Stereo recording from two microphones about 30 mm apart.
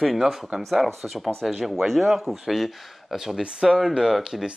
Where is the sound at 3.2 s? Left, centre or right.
Centre.